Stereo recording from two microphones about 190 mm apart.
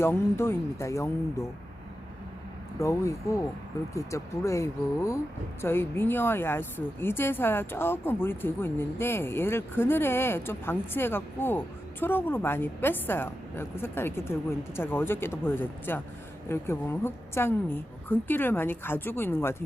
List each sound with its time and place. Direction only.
0.0 s speech: 15° left (ahead or behind)
2.7 s speech: 15° left (ahead or behind)